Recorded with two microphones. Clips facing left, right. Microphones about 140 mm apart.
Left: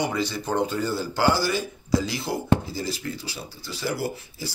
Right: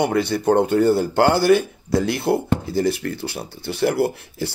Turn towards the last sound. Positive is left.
turn(degrees=-65)  # may be behind; listen again after turning